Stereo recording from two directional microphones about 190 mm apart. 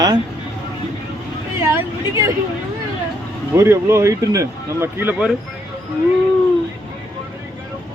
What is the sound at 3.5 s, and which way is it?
Speech, 15° right (ahead or behind).